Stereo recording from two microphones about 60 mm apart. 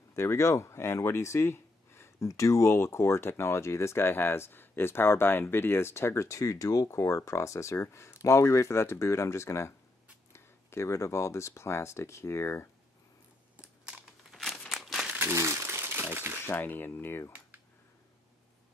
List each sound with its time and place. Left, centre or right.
0.1 s speech: left
2.1 s speech: left
13.6 s typing: centre
14.3 s crumpling: centre
14.7 s a sound: centre
15.3 s crumpling: right
16.4 s speech: left